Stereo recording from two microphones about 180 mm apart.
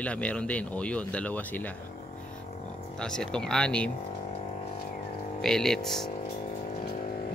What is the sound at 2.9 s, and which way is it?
Speech, 5° left (ahead or behind).